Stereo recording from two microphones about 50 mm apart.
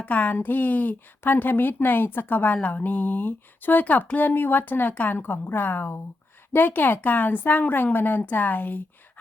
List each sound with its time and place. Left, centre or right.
0.0 s a woman's voice: left